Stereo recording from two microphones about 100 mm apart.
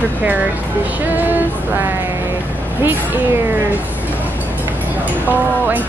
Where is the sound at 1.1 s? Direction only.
20° right (ahead or behind).